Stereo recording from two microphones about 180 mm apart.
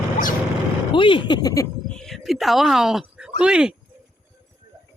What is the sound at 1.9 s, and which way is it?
Speech, 5° left (ahead or behind).